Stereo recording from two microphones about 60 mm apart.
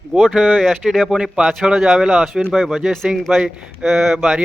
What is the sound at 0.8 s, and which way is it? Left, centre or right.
Speech, centre.